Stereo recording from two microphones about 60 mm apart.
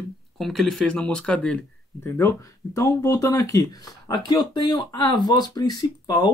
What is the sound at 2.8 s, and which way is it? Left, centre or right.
Speech, left.